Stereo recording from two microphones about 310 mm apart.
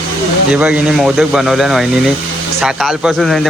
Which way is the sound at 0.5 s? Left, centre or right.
Centre.